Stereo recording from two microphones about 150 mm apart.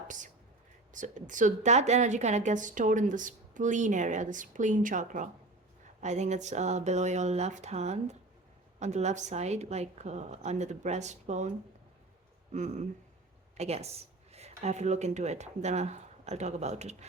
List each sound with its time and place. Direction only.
0.9 s a woman's voice: 55° right (ahead or behind)
12.5 s a woman's voice: 55° right (ahead or behind)